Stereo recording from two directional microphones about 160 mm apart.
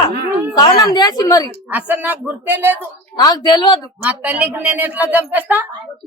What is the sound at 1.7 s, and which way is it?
A woman's voice, 10° right (ahead or behind).